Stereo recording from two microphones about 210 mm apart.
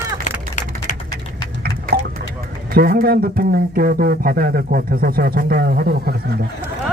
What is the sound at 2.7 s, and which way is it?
Speech, 45° right (ahead or behind).